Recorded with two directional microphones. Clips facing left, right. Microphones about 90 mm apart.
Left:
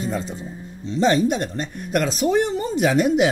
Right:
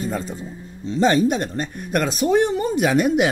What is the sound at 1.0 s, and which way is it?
A man's voice, 45° right (ahead or behind).